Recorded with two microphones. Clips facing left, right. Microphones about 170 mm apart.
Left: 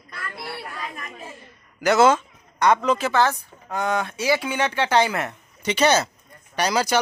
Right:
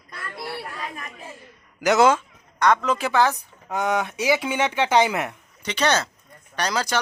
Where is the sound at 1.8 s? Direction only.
15° right (ahead or behind).